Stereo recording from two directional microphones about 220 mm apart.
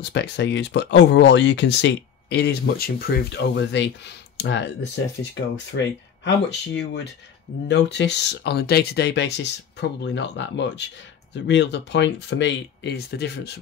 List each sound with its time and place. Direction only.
0.0 s speech: 50° left (ahead or behind)
6.2 s speech: 55° left (ahead or behind)